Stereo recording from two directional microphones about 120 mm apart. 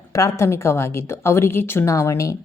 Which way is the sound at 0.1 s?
30° left (ahead or behind).